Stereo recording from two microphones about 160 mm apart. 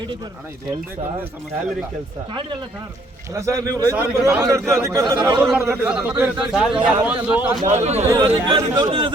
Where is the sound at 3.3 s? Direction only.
20° right (ahead or behind).